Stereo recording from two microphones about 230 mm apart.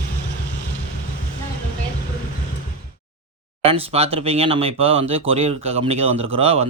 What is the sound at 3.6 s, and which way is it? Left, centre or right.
Speech, right.